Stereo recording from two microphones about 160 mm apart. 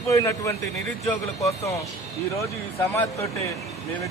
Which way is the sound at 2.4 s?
15° left (ahead or behind).